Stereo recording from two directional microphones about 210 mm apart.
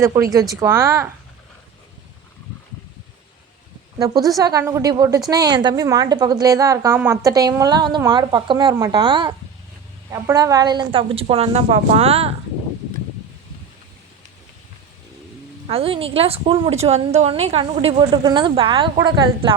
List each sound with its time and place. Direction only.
0.0 s a woman's voice: 15° right (ahead or behind)
3.9 s a woman's voice: 15° right (ahead or behind)
15.6 s a woman's voice: 25° right (ahead or behind)